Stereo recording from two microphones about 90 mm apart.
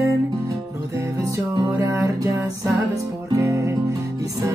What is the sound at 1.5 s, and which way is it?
Music, 50° right (ahead or behind).